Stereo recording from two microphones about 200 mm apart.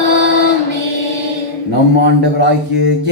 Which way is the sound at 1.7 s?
60° right (ahead or behind).